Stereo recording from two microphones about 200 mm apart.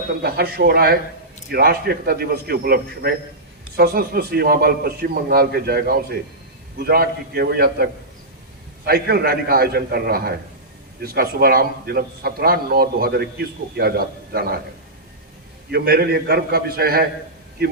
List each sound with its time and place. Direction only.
0.2 s a man's voice: 50° right (ahead or behind)
8.9 s a man's voice: 50° right (ahead or behind)
15.7 s a man's voice: 50° right (ahead or behind)